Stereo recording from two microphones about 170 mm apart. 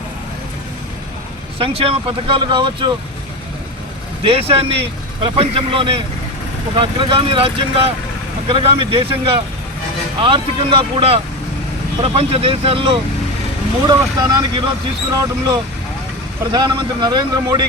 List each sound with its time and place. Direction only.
1.5 s speech: 35° right (ahead or behind)
4.2 s a man's voice: 35° right (ahead or behind)